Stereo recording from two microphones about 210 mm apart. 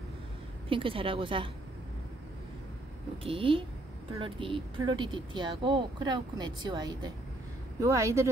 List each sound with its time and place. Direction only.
0.7 s speech: 25° right (ahead or behind)
3.3 s speech: 25° right (ahead or behind)